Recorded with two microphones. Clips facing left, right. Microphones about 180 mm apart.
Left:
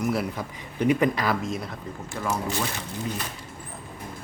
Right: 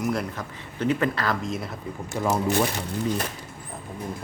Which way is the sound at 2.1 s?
15° right (ahead or behind).